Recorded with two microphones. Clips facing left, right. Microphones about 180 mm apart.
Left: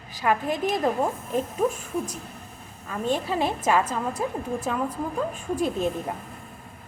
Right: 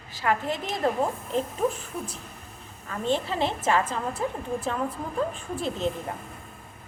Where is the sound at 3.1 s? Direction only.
10° left (ahead or behind).